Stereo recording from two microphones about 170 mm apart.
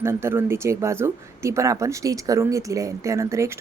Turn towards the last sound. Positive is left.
turn(degrees=-15)  # may be behind; listen again after turning